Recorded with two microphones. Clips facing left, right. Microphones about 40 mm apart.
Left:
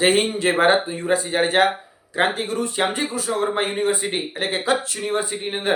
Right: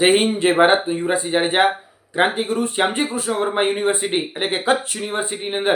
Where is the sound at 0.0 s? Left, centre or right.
Right.